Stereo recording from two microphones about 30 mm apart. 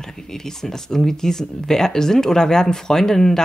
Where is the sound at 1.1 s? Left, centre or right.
Centre.